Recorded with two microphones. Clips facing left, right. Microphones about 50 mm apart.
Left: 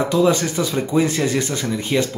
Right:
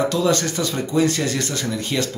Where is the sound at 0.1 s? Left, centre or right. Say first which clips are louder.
Left 3 dB; centre.